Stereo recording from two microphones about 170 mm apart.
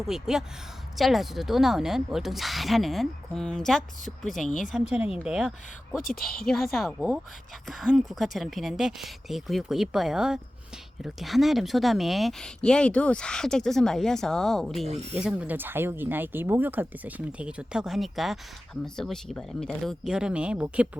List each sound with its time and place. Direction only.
0.1 s speech: centre (ahead or behind)
4.4 s speech: 50° left (ahead or behind)
4.7 s speech: 5° right (ahead or behind)
6.0 s speech: 55° left (ahead or behind)
6.2 s speech: centre (ahead or behind)